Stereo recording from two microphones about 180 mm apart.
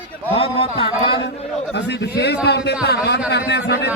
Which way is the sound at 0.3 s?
30° left (ahead or behind).